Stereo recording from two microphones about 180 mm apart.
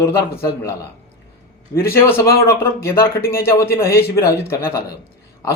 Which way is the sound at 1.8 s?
15° left (ahead or behind).